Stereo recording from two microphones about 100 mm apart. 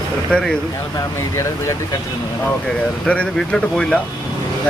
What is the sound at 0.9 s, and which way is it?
Speech, 35° left (ahead or behind).